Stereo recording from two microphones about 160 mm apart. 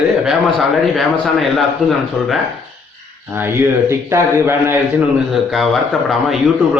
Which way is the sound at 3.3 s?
15° right (ahead or behind).